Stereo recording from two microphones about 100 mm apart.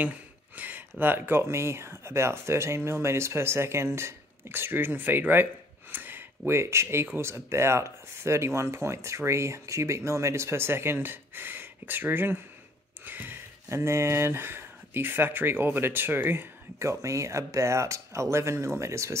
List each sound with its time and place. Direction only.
0.6 s speech: 20° right (ahead or behind)